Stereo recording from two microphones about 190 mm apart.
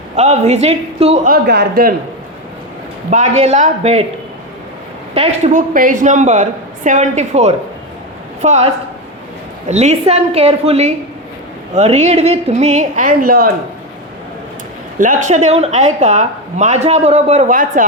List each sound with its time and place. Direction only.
0.2 s speech: 35° right (ahead or behind)
1.3 s speech: 55° right (ahead or behind)
3.1 s speech: 40° right (ahead or behind)
5.1 s speech: 35° right (ahead or behind)
14.9 s speech: 40° right (ahead or behind)